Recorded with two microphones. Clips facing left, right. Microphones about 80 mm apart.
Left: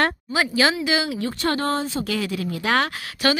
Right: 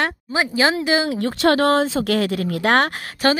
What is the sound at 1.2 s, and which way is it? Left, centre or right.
Speech, right.